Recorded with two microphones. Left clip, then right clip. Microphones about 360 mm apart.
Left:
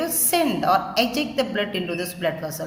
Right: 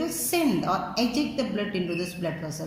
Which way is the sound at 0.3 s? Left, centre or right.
Left.